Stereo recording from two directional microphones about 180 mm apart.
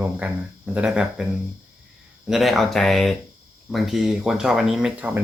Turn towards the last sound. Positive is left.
turn(degrees=-5)  # may be behind; listen again after turning